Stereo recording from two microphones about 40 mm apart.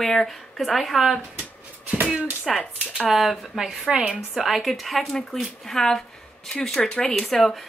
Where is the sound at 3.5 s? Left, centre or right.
Centre.